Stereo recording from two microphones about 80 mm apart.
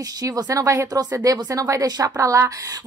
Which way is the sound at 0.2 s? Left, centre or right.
Right.